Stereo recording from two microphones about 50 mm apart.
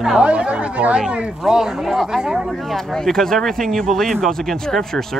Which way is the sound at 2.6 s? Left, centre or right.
Centre.